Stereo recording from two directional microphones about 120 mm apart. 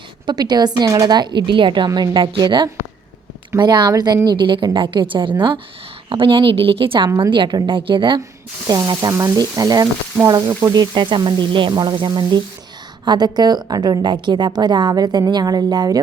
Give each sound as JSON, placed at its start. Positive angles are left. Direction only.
{"t": 0.3, "sound": "a woman's voice", "side_deg": -35}
{"t": 8.6, "sound": "a woman's voice", "side_deg": -30}